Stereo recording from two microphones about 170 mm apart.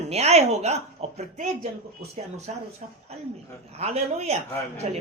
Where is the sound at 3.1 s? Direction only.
40° right (ahead or behind).